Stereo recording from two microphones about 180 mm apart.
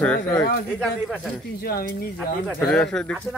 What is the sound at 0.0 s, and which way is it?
Speech, 5° left (ahead or behind).